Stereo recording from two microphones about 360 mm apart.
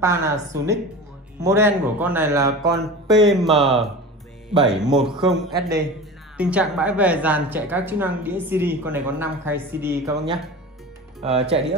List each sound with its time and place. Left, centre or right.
0.0 s a woman's voice: centre
11.2 s speech: centre